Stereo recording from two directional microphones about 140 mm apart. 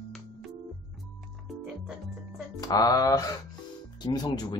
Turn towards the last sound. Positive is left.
turn(degrees=30)  # may be behind; listen again after turning